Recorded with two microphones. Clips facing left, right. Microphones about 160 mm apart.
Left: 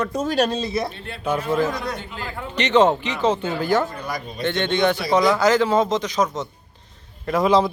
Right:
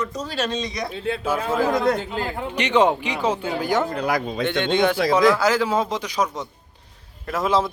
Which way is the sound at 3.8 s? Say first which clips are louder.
Right 6 dB; 70° right (ahead or behind).